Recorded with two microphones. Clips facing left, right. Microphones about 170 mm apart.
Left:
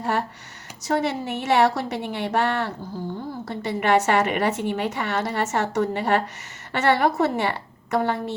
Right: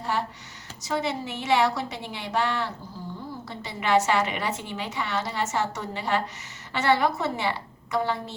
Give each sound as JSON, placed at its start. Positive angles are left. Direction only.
{"t": 0.0, "sound": "a woman's voice", "side_deg": 50}